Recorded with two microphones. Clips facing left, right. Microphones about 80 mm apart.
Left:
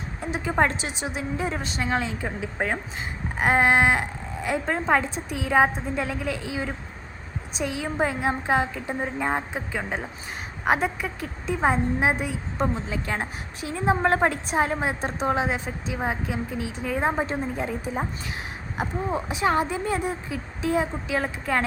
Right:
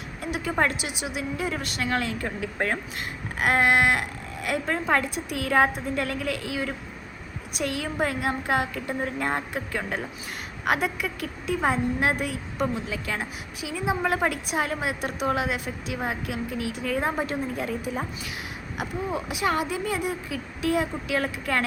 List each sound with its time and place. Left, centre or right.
0.2 s speech: left; by 2.7 s centre
3.3 s a woman's voice: left
5.4 s a woman's voice: centre
7.9 s a woman's voice: left
10.7 s a woman's voice: left